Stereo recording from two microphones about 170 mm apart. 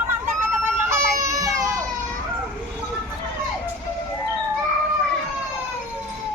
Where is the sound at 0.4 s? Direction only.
15° right (ahead or behind).